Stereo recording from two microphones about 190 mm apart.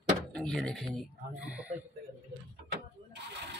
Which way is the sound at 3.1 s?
65° right (ahead or behind).